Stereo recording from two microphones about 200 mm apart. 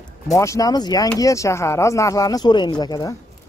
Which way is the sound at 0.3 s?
15° left (ahead or behind).